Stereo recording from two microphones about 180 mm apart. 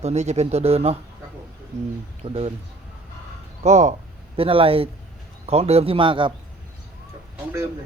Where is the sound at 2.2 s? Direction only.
35° right (ahead or behind).